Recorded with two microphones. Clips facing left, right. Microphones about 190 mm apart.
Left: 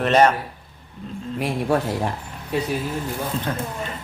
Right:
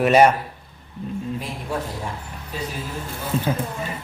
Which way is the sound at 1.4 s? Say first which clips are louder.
Left 7 dB; 65° left (ahead or behind).